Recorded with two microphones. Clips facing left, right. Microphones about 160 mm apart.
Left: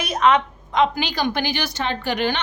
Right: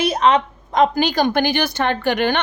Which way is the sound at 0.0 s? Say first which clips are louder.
Right 2 dB; 30° right (ahead or behind).